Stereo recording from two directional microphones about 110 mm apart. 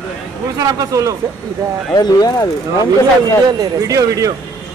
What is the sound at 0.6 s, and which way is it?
Speech, 35° right (ahead or behind).